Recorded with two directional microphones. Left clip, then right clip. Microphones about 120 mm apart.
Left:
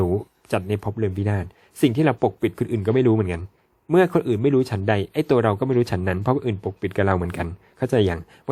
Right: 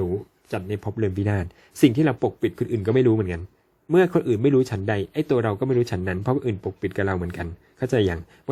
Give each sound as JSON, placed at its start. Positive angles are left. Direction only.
{"t": 0.0, "sound": "a sound", "side_deg": 45}
{"t": 0.9, "sound": "speech", "side_deg": 10}
{"t": 4.9, "sound": "speech", "side_deg": 25}
{"t": 7.9, "sound": "speech", "side_deg": 20}